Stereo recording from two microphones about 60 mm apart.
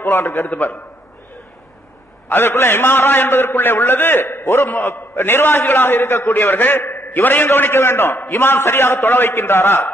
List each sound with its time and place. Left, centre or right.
0.0 s a man's voice: left
2.2 s a man's voice: left